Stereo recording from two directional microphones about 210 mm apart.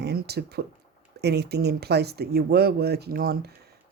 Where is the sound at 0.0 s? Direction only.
50° right (ahead or behind).